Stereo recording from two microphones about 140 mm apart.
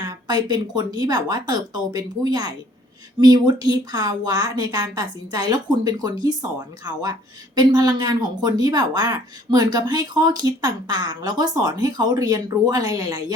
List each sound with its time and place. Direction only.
0.0 s speech: 30° right (ahead or behind)